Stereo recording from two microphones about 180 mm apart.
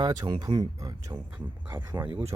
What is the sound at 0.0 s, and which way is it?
Speech, 20° right (ahead or behind).